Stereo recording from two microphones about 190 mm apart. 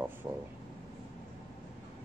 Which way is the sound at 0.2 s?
15° right (ahead or behind).